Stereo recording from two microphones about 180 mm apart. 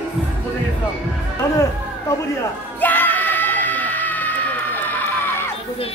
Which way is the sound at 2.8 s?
10° left (ahead or behind).